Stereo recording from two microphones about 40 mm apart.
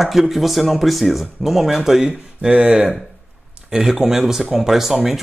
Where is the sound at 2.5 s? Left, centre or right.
Right.